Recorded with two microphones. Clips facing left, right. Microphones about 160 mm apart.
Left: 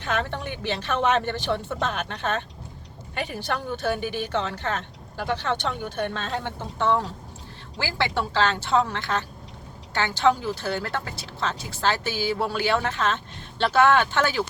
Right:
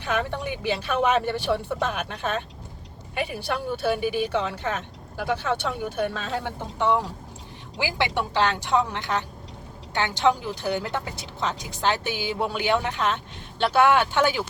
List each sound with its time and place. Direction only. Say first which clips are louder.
0.0 s speech: right 1 dB; 10° right (ahead or behind)